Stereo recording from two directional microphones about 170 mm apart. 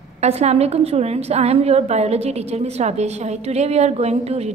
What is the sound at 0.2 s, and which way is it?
A woman's voice, 40° right (ahead or behind).